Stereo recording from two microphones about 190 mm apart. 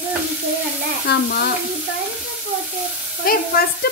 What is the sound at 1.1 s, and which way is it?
Stir, 60° left (ahead or behind).